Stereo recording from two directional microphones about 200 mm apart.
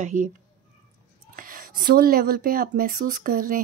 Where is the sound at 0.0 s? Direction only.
40° right (ahead or behind).